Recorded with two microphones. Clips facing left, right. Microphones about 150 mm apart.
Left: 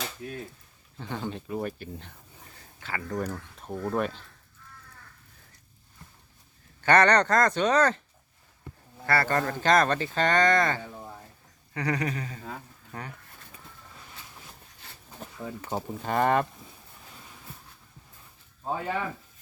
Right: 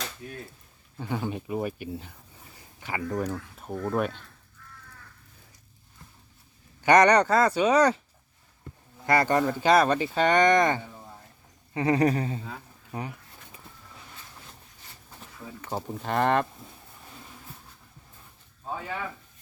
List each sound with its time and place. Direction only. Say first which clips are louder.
0.9 s speech: right 3 dB; 10° right (ahead or behind)
2.8 s speech: right 3 dB; 15° right (ahead or behind)
3.3 s speech: right 2 dB; 5° right (ahead or behind)
6.8 s speech: right 2 dB; 15° right (ahead or behind)
9.0 s speech: right 3 dB; 15° right (ahead or behind)
11.7 s a sound: right 6 dB; 25° right (ahead or behind)
12.0 s speech: right 9 dB; 35° right (ahead or behind)
12.9 s speech: right 5 dB; 15° right (ahead or behind)
15.7 s speech: even; centre (ahead or behind)